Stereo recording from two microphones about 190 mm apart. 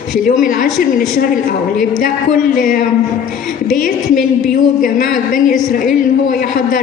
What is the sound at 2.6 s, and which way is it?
Speech, 45° left (ahead or behind).